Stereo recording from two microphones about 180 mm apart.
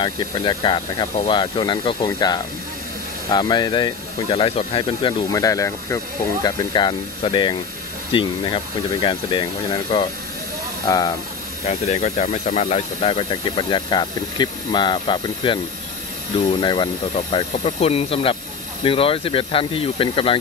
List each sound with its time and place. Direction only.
0.0 s speech: 25° left (ahead or behind)
5.3 s speech: 20° left (ahead or behind)
11.6 s speech: 40° left (ahead or behind)